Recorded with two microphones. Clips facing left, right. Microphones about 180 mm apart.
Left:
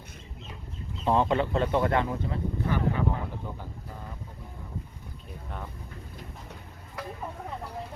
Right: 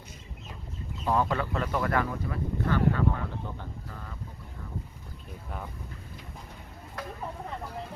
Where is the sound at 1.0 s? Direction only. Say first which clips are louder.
Left 3 dB; 25° left (ahead or behind).